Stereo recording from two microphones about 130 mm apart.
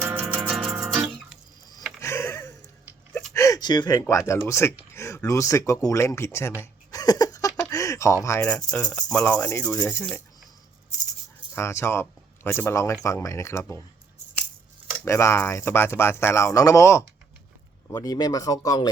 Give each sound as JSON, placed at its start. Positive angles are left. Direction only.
{"t": 0.0, "sound": "music", "side_deg": -15}
{"t": 0.5, "sound": "music", "side_deg": 0}
{"t": 2.0, "sound": "a sound", "side_deg": 20}
{"t": 3.1, "sound": "a sound", "side_deg": 0}
{"t": 3.3, "sound": "speech", "side_deg": 25}
{"t": 6.6, "sound": "a sound", "side_deg": 30}
{"t": 7.7, "sound": "speech", "side_deg": 25}
{"t": 9.2, "sound": "speech", "side_deg": 10}
{"t": 9.5, "sound": "speech", "side_deg": 20}
{"t": 11.5, "sound": "speech", "side_deg": 20}
{"t": 15.0, "sound": "speech", "side_deg": 20}